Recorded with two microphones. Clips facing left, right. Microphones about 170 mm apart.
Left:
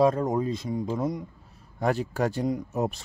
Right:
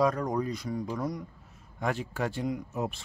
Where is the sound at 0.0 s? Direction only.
25° left (ahead or behind).